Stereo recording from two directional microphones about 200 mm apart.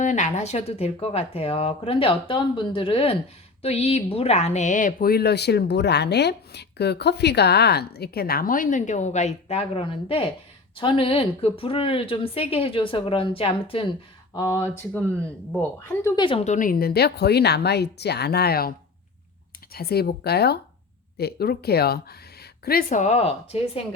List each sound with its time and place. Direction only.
0.0 s speech: 35° left (ahead or behind)
14.3 s speech: 15° left (ahead or behind)
16.2 s speech: 30° left (ahead or behind); by 18.7 s 50° left (ahead or behind)
19.7 s speech: 50° left (ahead or behind); by 23.8 s 30° left (ahead or behind)